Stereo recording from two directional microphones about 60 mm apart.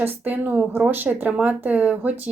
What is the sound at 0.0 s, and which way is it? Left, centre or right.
Speech, right.